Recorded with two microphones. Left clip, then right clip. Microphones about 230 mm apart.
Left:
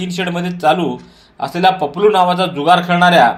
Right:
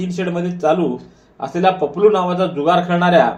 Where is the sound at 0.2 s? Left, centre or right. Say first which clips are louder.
Left 1 dB; left.